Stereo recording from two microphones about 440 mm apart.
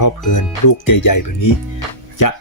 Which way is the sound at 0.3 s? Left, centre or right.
Left.